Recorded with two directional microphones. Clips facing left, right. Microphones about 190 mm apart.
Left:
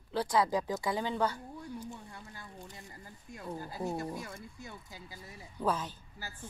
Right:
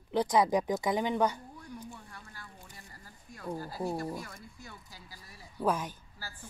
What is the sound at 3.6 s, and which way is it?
Speech, 20° left (ahead or behind).